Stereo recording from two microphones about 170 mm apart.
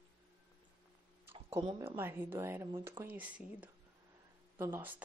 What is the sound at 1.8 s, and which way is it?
Speech, 15° right (ahead or behind).